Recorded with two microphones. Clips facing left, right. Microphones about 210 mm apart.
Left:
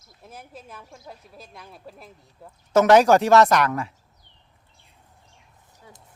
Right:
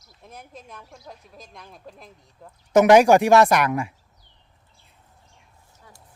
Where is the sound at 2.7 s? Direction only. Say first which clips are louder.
Right 2 dB; 15° right (ahead or behind).